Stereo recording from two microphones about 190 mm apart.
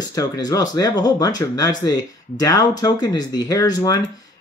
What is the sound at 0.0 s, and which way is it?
Speech, 20° left (ahead or behind).